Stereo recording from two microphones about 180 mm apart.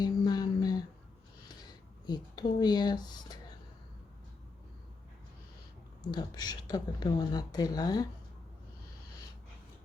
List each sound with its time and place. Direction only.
0.0 s a sound: 20° left (ahead or behind)
2.0 s speech: 25° left (ahead or behind)
6.0 s speech: 20° left (ahead or behind)